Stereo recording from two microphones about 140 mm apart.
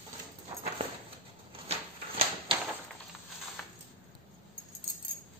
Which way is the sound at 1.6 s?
45° right (ahead or behind).